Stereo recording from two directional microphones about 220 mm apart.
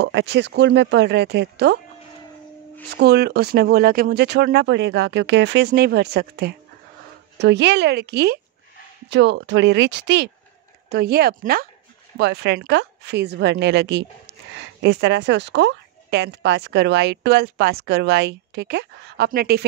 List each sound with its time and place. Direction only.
0.0 s speech: 55° right (ahead or behind)
3.0 s speech: 45° right (ahead or behind)